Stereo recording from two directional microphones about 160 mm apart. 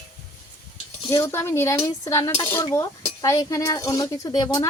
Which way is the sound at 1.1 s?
20° left (ahead or behind).